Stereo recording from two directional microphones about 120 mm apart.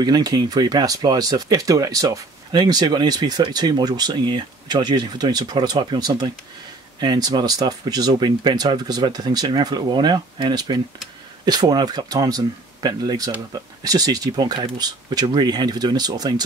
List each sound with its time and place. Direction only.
0.0 s speech: 35° right (ahead or behind)